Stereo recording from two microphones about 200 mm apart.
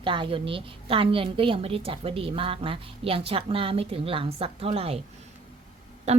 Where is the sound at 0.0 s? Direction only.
25° right (ahead or behind).